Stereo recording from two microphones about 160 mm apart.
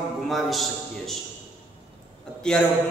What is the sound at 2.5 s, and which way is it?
Speech, 5° left (ahead or behind).